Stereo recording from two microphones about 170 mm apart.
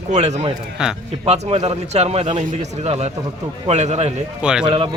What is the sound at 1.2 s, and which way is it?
A man's voice, 40° right (ahead or behind).